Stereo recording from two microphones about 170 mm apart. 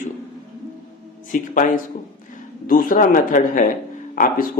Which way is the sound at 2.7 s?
55° left (ahead or behind).